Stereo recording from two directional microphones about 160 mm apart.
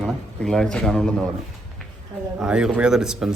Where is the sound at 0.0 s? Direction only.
5° left (ahead or behind).